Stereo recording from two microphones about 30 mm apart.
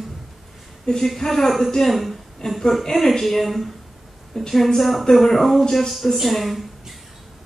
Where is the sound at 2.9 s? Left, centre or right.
Centre.